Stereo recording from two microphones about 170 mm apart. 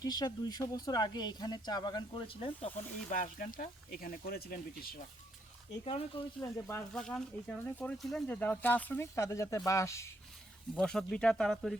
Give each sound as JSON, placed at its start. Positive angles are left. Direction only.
{"t": 0.0, "sound": "speech", "side_deg": 20}
{"t": 3.1, "sound": "speech", "side_deg": 55}
{"t": 5.8, "sound": "speech", "side_deg": 35}
{"t": 6.4, "sound": "speech", "side_deg": 15}
{"t": 6.9, "sound": "speech", "side_deg": 5}
{"t": 10.8, "sound": "speech", "side_deg": 5}